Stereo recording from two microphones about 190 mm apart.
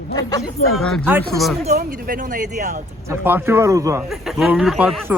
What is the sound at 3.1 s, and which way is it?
Speech, 10° right (ahead or behind).